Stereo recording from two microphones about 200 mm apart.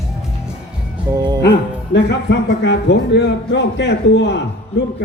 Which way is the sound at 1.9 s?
60° left (ahead or behind).